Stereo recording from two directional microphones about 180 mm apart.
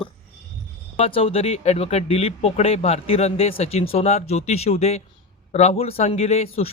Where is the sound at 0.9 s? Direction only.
30° left (ahead or behind).